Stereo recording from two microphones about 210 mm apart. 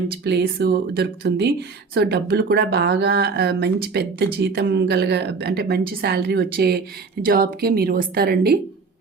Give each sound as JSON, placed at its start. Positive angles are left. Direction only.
{"t": 0.3, "sound": "speech", "side_deg": -50}